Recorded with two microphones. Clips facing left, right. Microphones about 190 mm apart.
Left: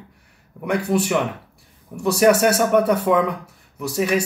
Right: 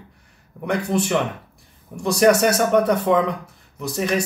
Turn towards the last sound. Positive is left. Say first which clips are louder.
# left 2 dB
turn(degrees=10)  # may be behind; listen again after turning